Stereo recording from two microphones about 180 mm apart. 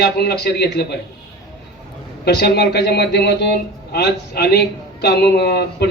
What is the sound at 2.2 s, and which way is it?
A man's voice, 65° left (ahead or behind).